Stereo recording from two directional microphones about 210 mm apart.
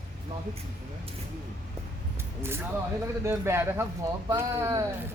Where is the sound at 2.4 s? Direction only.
10° right (ahead or behind).